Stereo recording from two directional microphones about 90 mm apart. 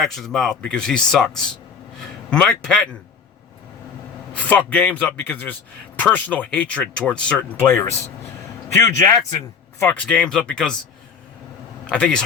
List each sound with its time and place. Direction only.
0.0 s speech: 5° left (ahead or behind)
4.4 s speech: 15° left (ahead or behind)
7.5 s a man's voice: 25° left (ahead or behind)
9.8 s speech: 15° left (ahead or behind)
11.9 s speech: 10° left (ahead or behind)